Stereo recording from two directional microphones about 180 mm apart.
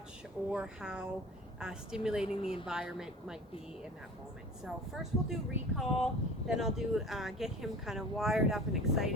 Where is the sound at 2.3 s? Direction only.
30° left (ahead or behind).